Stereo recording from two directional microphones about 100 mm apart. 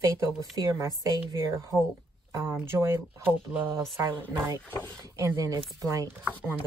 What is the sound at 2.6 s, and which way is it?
Speech, 25° right (ahead or behind).